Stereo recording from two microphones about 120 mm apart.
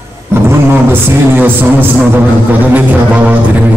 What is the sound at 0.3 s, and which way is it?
Speech, 20° right (ahead or behind).